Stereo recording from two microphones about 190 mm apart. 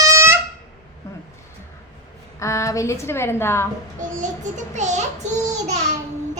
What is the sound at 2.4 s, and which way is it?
A woman's voice, 15° left (ahead or behind).